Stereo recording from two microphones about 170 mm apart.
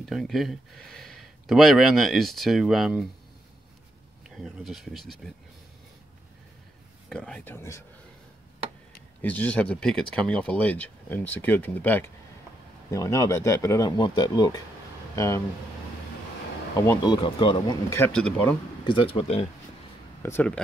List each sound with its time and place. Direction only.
0.0 s speech: centre (ahead or behind)
4.4 s speech: centre (ahead or behind)
7.1 s speech: 5° left (ahead or behind)
9.2 s speech: 10° left (ahead or behind)
16.7 s speech: 20° left (ahead or behind)
17.1 s speech: 30° left (ahead or behind)
17.8 s speech: 10° left (ahead or behind)
18.9 s speech: 30° left (ahead or behind)
20.2 s speech: 15° left (ahead or behind)